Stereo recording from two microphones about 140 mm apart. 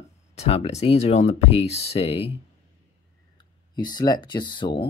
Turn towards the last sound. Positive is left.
turn(degrees=35)  # may be behind; listen again after turning